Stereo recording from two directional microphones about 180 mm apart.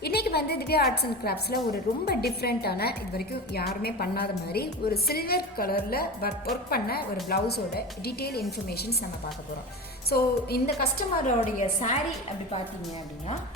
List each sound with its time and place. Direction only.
0.0 s a woman's voice: 60° left (ahead or behind)
10.1 s a woman's voice: 60° left (ahead or behind)
11.3 s a woman's voice: 45° left (ahead or behind)